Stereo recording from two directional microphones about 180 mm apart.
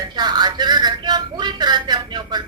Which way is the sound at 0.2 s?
25° right (ahead or behind).